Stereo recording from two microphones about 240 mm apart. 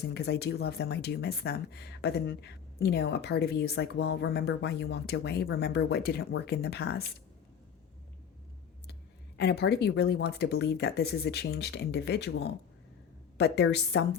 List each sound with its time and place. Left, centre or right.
0.1 s speech: left
9.4 s speech: left
13.3 s speech: left